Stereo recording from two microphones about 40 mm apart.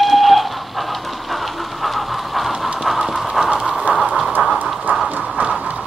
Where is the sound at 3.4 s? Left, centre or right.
Centre.